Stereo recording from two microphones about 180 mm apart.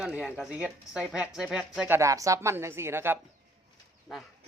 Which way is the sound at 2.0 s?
15° right (ahead or behind).